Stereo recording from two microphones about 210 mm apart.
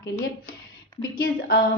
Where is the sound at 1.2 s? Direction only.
45° left (ahead or behind).